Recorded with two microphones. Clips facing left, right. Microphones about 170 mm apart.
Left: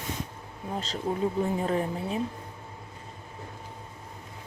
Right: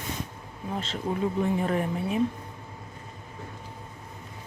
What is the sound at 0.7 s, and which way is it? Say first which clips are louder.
Speech: even; 35° left (ahead or behind).